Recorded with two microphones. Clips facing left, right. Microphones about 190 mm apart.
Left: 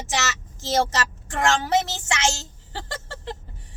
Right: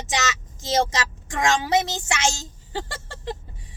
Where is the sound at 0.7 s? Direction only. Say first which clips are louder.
Even; 15° right (ahead or behind).